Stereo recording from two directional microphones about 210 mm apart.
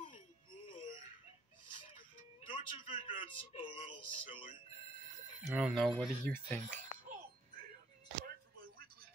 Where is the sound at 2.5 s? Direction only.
25° left (ahead or behind).